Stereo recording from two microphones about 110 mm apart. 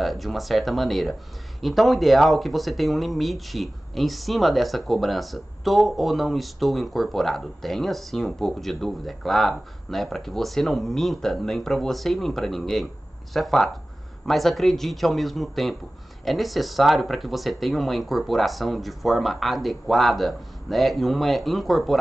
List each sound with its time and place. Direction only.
0.0 s speech: centre (ahead or behind)